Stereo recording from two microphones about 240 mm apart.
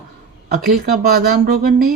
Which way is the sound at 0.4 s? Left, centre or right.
Right.